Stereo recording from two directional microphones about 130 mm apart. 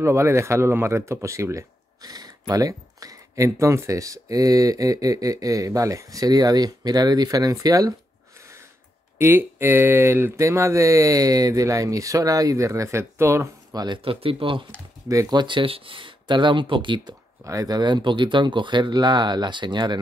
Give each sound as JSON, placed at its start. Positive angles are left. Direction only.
{"t": 0.0, "sound": "speech", "side_deg": -20}
{"t": 8.4, "sound": "a sound", "side_deg": -20}
{"t": 9.2, "sound": "speech", "side_deg": -15}
{"t": 15.0, "sound": "speech", "side_deg": -30}